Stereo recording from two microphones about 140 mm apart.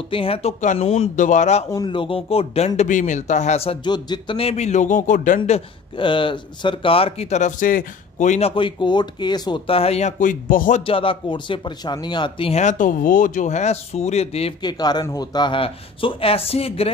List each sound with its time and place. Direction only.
0.1 s speech: 40° left (ahead or behind)
1.1 s speech: 65° left (ahead or behind)
1.9 s speech: 40° left (ahead or behind)
3.8 s speech: 30° left (ahead or behind); by 5.4 s 65° left (ahead or behind)
5.9 s speech: 35° left (ahead or behind)
9.7 s speech: 45° left (ahead or behind); by 10.8 s 70° left (ahead or behind)
10.8 s speech: 40° left (ahead or behind)
12.6 s speech: 70° left (ahead or behind); by 14.5 s 50° left (ahead or behind)
14.6 s speech: 30° left (ahead or behind)